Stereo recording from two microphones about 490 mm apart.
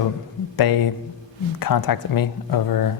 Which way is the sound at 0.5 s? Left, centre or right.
Left.